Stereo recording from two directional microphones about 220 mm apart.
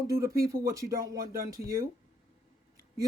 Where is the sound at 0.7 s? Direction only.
15° right (ahead or behind).